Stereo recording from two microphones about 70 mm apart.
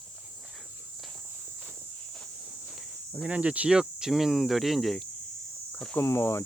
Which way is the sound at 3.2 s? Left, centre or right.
Centre.